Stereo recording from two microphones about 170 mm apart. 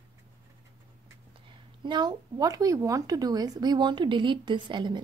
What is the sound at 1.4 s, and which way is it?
A woman's voice, 25° right (ahead or behind).